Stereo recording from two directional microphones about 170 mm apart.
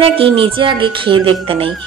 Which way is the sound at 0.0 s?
30° right (ahead or behind).